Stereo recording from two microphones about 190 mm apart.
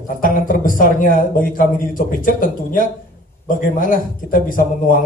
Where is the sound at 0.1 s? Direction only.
45° left (ahead or behind).